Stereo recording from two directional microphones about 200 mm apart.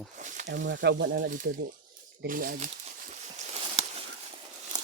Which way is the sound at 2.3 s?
45° right (ahead or behind).